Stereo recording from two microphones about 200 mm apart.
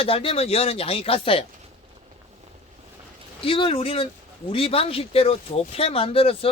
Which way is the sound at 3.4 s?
25° left (ahead or behind).